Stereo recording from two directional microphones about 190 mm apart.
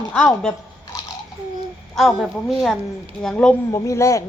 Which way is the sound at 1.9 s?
Centre (ahead or behind).